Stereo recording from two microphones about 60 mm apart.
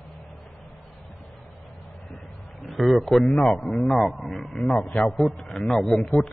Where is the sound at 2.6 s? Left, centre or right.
Centre.